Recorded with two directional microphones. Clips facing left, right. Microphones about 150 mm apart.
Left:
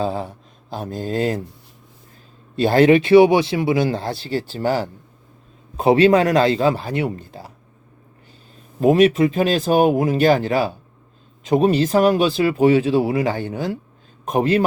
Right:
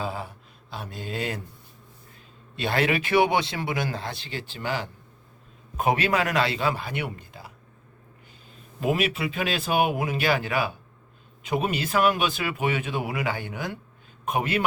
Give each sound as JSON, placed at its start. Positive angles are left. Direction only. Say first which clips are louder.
{"t": 0.0, "sound": "speech", "louder": "left 9 dB", "side_deg": 35}
{"t": 2.6, "sound": "speech", "louder": "left 12 dB", "side_deg": 30}
{"t": 8.8, "sound": "speech", "louder": "left 12 dB", "side_deg": 40}